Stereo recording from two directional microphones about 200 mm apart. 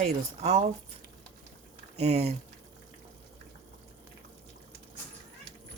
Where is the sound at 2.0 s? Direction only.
35° right (ahead or behind).